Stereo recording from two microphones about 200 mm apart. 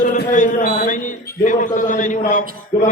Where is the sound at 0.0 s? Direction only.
40° left (ahead or behind).